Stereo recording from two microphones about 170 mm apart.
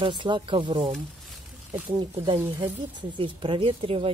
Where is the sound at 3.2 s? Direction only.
30° right (ahead or behind).